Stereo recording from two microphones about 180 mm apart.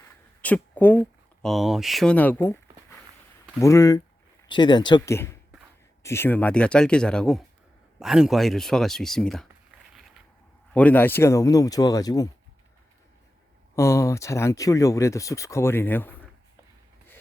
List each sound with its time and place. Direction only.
0.4 s speech: 10° left (ahead or behind)
10.8 s speech: 10° left (ahead or behind)
13.7 s speech: 15° left (ahead or behind)